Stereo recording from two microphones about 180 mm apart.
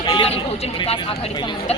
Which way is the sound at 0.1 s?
30° left (ahead or behind).